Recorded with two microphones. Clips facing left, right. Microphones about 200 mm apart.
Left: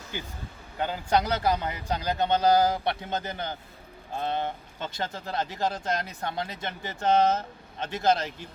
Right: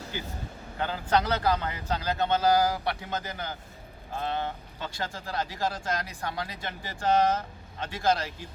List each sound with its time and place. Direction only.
0.8 s a man's voice: 15° left (ahead or behind)